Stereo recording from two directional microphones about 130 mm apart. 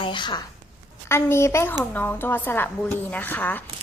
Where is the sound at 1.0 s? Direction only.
20° left (ahead or behind).